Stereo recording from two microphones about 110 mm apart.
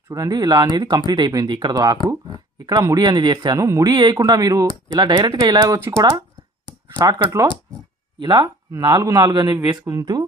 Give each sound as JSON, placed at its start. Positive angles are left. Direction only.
{"t": 0.1, "sound": "speech", "side_deg": -35}
{"t": 3.9, "sound": "speech", "side_deg": -40}